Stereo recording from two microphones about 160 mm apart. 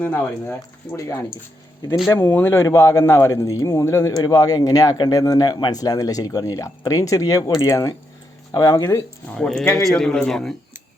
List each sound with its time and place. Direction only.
0.0 s speech: 10° left (ahead or behind)
9.3 s a man's voice: 5° left (ahead or behind)